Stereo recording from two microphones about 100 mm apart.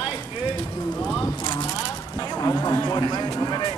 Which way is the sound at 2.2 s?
40° left (ahead or behind).